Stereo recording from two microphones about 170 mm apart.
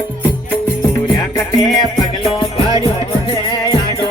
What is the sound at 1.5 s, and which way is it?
Music, 25° left (ahead or behind).